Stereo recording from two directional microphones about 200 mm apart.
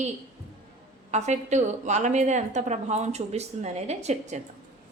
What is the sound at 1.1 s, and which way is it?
A woman's voice, 35° right (ahead or behind).